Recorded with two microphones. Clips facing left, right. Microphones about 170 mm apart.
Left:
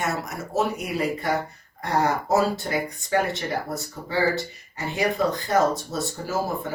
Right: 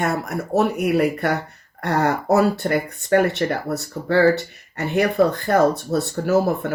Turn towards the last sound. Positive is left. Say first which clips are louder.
# right 8 dB
turn(degrees=-65)  # may be behind; listen again after turning